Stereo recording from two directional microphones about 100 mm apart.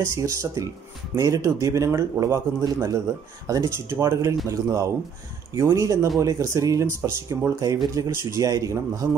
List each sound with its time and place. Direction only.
0.0 s speech: 30° right (ahead or behind)